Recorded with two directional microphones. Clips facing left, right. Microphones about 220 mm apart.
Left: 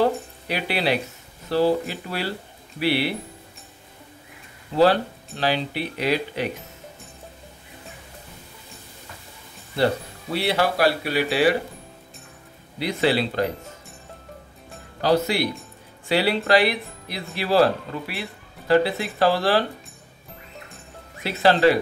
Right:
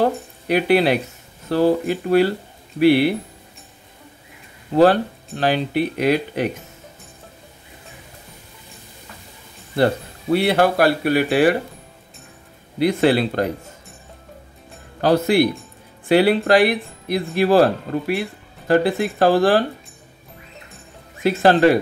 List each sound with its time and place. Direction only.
0.0 s speech: 50° right (ahead or behind)
4.7 s speech: 50° right (ahead or behind)
10.3 s speech: 55° right (ahead or behind)
12.7 s speech: 50° right (ahead or behind)
15.0 s speech: 55° right (ahead or behind)
21.2 s speech: 50° right (ahead or behind)